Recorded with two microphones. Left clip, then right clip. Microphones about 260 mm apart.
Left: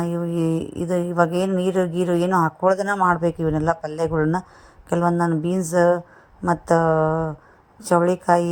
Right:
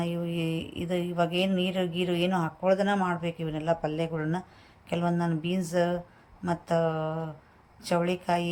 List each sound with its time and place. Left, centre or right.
0.0 s speech: left